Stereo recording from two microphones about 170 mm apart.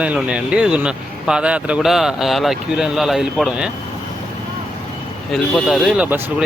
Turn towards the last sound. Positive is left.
turn(degrees=-5)  # may be behind; listen again after turning